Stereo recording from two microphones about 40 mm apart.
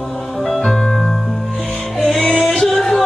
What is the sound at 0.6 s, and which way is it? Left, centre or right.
Keyboard, centre.